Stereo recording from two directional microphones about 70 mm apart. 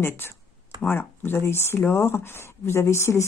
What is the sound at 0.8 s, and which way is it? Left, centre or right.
Speech, left.